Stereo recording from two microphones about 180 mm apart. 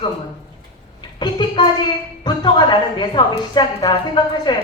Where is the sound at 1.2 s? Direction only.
25° left (ahead or behind).